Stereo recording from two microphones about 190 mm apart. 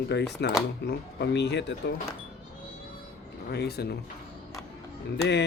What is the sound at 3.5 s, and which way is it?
Speech, 55° left (ahead or behind).